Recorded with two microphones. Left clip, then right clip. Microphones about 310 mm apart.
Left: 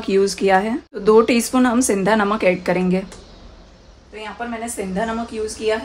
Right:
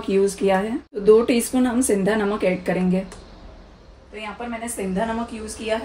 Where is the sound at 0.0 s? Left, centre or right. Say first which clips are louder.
Left 2 dB; left.